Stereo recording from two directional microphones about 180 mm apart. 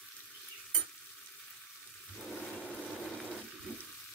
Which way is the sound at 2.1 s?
5° left (ahead or behind).